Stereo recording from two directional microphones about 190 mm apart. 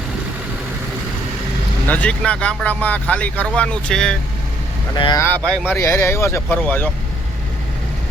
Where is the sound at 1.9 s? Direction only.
5° left (ahead or behind).